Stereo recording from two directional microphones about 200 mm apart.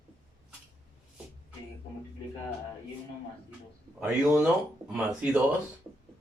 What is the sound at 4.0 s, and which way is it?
Speech, 5° right (ahead or behind).